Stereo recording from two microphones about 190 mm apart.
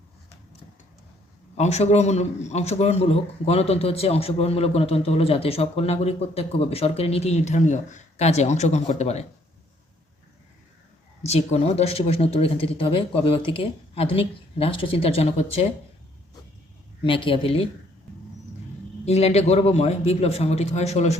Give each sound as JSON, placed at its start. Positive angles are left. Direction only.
{"t": 1.5, "sound": "a man's voice", "side_deg": 35}
{"t": 11.3, "sound": "a man's voice", "side_deg": 35}
{"t": 17.0, "sound": "speech", "side_deg": 25}
{"t": 19.0, "sound": "a man's voice", "side_deg": 35}